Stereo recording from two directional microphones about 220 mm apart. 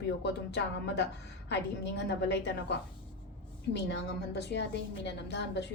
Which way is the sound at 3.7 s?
50° left (ahead or behind).